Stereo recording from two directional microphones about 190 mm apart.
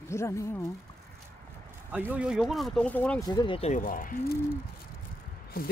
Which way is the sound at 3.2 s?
25° left (ahead or behind).